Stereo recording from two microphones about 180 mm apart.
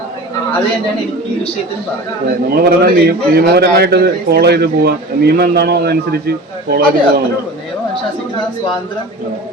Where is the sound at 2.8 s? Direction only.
60° right (ahead or behind).